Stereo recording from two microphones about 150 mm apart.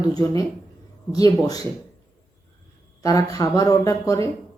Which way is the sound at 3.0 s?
25° left (ahead or behind).